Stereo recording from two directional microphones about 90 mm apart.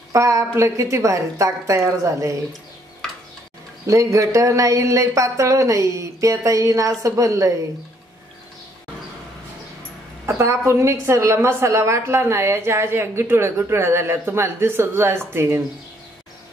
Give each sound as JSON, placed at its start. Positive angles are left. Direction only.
{"t": 0.1, "sound": "speech", "side_deg": -35}
{"t": 3.8, "sound": "speech", "side_deg": -35}
{"t": 10.2, "sound": "a woman's voice", "side_deg": -30}